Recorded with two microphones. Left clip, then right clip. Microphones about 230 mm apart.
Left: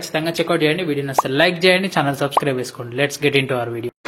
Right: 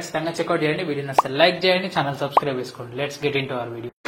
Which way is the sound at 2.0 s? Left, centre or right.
Left.